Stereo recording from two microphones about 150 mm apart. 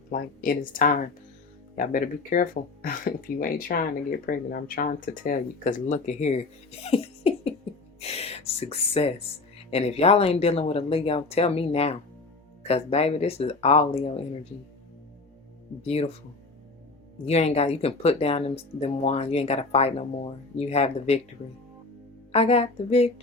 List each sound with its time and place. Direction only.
0.1 s speech: 75° left (ahead or behind); by 14.2 s 40° left (ahead or behind)
15.8 s speech: 45° left (ahead or behind)
17.2 s speech: 45° left (ahead or behind)
22.3 s speech: 45° left (ahead or behind)